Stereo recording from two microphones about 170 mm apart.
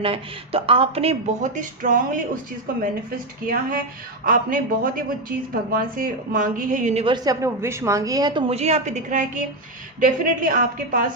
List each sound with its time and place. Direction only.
0.0 s speech: 35° right (ahead or behind); by 2.4 s 55° right (ahead or behind)
3.4 s a man's voice: 55° right (ahead or behind)
7.0 s a woman's voice: 25° right (ahead or behind); by 11.1 s 50° right (ahead or behind)